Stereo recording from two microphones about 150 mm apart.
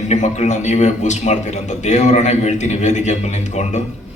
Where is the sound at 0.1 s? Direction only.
50° left (ahead or behind).